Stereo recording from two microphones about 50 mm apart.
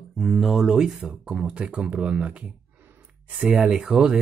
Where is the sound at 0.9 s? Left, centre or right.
Right.